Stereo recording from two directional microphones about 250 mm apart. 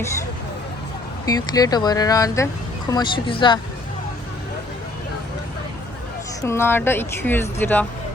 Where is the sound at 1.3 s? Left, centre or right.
Centre.